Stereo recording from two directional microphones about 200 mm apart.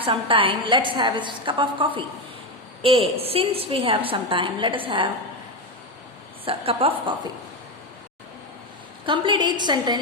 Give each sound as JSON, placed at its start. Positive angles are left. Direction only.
{"t": 0.0, "sound": "a woman's voice", "side_deg": -25}
{"t": 6.4, "sound": "a woman's voice", "side_deg": -30}
{"t": 9.0, "sound": "a woman's voice", "side_deg": -25}